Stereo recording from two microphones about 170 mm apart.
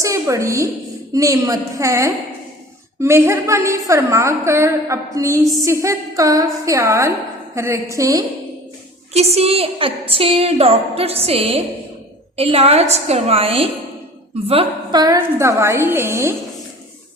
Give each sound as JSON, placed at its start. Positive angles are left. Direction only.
{"t": 0.0, "sound": "a woman's voice", "side_deg": -20}
{"t": 9.1, "sound": "a woman's voice", "side_deg": -35}
{"t": 15.0, "sound": "a woman's voice", "side_deg": -20}